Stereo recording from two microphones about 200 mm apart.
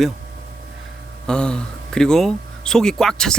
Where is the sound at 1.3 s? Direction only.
5° left (ahead or behind).